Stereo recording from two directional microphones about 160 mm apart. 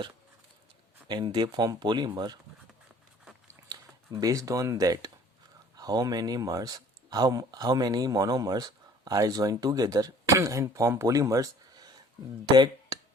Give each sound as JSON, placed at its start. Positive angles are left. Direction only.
{"t": 1.0, "sound": "speech", "side_deg": -25}
{"t": 3.7, "sound": "speech", "side_deg": -20}